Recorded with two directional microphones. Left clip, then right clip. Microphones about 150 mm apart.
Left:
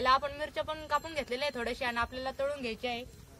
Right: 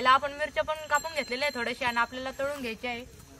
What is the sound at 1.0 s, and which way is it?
Speech, 65° left (ahead or behind).